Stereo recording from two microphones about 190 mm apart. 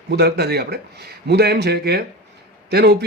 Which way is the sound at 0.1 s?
60° right (ahead or behind).